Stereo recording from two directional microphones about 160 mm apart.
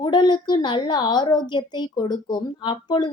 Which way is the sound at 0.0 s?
30° left (ahead or behind).